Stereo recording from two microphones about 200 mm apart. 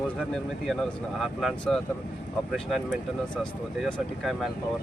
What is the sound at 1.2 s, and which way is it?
Speech, centre (ahead or behind).